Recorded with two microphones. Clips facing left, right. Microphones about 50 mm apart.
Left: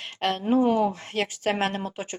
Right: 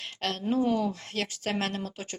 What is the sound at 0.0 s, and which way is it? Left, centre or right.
Speech, left.